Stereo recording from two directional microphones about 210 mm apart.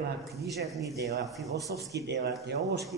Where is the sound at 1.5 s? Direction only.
50° right (ahead or behind).